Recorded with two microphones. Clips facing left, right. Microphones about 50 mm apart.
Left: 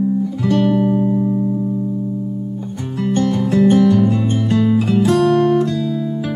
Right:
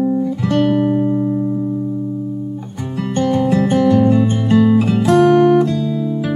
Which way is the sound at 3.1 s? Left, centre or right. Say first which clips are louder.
Right 1 dB; centre.